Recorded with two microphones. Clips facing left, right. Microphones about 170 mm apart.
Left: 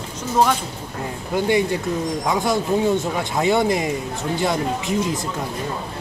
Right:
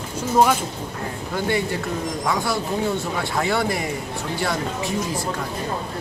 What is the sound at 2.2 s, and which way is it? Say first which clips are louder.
Speech: left 3 dB; 20° left (ahead or behind).